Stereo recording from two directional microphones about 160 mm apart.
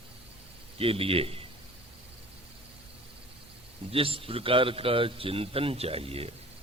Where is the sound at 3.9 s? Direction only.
35° right (ahead or behind).